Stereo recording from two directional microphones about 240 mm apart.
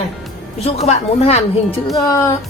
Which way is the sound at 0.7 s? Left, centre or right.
Left.